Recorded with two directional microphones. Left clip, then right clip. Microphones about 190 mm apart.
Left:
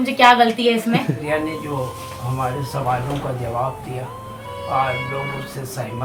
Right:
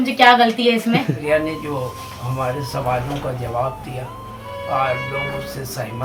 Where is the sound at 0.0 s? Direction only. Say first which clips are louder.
Even; 20° left (ahead or behind).